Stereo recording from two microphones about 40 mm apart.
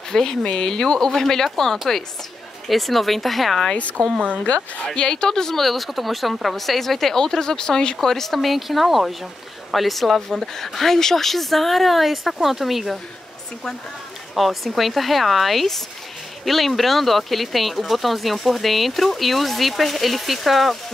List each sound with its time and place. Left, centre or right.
0.1 s speech: centre
4.0 s a woman's voice: centre
5.6 s speech: centre
8.0 s speech: centre
14.3 s speech: centre